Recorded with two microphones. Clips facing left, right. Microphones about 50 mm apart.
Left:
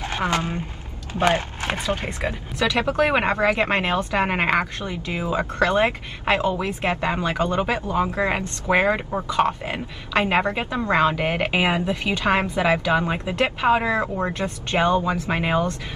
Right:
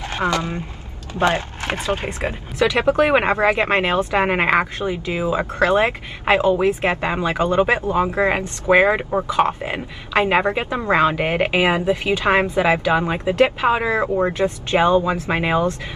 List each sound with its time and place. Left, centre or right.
1.2 s speech: right
4.5 s speech: centre